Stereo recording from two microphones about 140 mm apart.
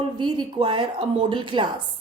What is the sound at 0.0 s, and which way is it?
A woman's voice, 35° right (ahead or behind).